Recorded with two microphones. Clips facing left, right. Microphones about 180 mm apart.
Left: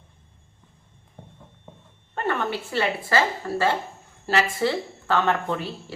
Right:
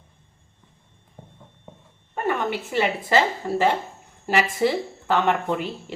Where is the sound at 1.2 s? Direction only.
10° right (ahead or behind).